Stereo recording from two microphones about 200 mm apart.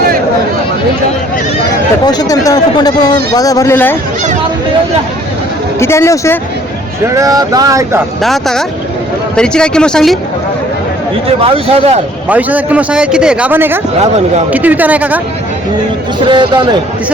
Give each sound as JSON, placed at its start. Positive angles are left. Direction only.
{"t": 2.0, "sound": "speech", "side_deg": 20}
{"t": 5.8, "sound": "speech", "side_deg": 15}
{"t": 7.2, "sound": "a man's voice", "side_deg": -15}
{"t": 8.2, "sound": "speech", "side_deg": 0}
{"t": 11.3, "sound": "a man's voice", "side_deg": -30}
{"t": 12.3, "sound": "a man's voice", "side_deg": -10}
{"t": 16.3, "sound": "a man's voice", "side_deg": -25}